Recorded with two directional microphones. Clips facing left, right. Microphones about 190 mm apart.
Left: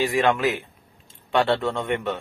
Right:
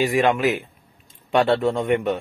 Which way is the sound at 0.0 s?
15° right (ahead or behind).